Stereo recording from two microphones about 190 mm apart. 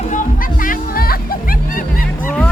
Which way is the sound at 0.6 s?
50° left (ahead or behind).